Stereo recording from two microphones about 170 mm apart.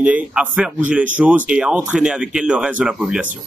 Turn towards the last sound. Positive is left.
turn(degrees=-5)  # may be behind; listen again after turning